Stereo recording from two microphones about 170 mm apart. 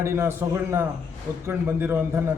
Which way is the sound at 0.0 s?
15° right (ahead or behind).